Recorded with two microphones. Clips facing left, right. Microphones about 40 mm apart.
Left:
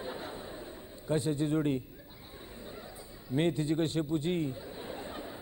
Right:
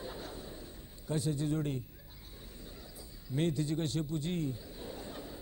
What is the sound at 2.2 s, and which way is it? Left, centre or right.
Speech, left.